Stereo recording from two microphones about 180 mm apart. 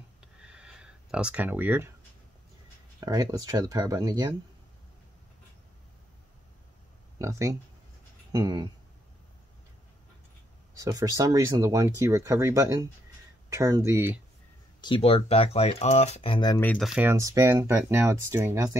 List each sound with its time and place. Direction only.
0.2 s a sound: 5° right (ahead or behind)
3.0 s speech: 20° right (ahead or behind)
7.2 s speech: 15° right (ahead or behind)
10.8 s speech: 20° right (ahead or behind)
14.8 s speech: 30° left (ahead or behind)
16.5 s speech: 10° left (ahead or behind)
16.8 s speech: 5° right (ahead or behind)